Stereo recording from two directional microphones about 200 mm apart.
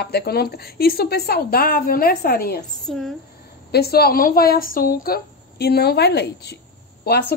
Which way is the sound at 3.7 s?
50° left (ahead or behind).